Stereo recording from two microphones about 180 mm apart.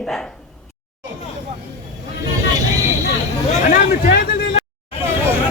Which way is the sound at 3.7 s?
55° left (ahead or behind).